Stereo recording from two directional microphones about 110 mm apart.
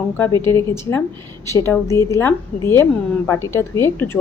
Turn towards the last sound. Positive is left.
turn(degrees=25)  # may be behind; listen again after turning